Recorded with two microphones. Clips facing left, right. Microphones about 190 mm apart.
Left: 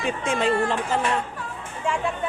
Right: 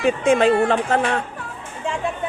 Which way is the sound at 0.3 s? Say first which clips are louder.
Right 6 dB; 60° right (ahead or behind).